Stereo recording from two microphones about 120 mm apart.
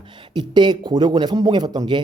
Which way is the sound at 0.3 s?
40° right (ahead or behind).